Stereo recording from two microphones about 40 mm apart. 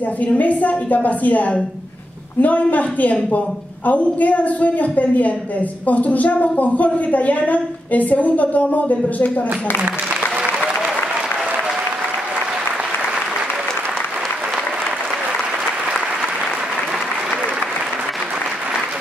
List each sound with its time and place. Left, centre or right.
0.2 s a woman's voice: left